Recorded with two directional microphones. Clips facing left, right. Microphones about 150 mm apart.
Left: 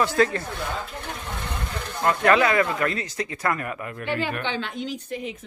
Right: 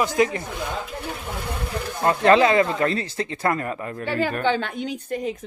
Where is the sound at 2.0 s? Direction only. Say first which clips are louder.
Right 3 dB; 30° right (ahead or behind); by 5.3 s 50° right (ahead or behind).